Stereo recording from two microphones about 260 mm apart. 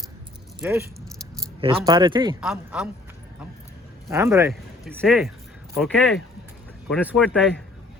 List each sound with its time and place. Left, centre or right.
0.6 s speech: centre
2.4 s a man's voice: centre
4.1 s speech: centre
4.9 s a man's voice: centre